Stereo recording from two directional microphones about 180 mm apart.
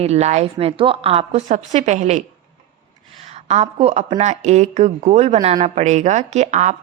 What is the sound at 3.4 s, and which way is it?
Speech, 35° right (ahead or behind).